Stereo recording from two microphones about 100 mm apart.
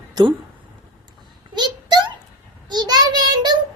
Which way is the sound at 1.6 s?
50° right (ahead or behind).